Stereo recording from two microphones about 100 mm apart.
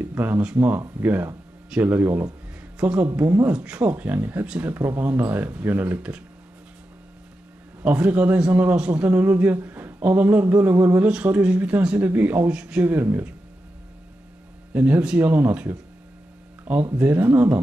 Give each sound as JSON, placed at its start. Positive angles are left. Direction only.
{"t": 0.0, "sound": "a woman's voice", "side_deg": -20}
{"t": 7.8, "sound": "a man's voice", "side_deg": -15}
{"t": 14.7, "sound": "a woman's voice", "side_deg": -20}